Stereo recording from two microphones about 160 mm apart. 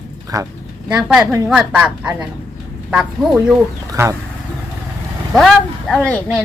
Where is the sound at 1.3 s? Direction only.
15° right (ahead or behind).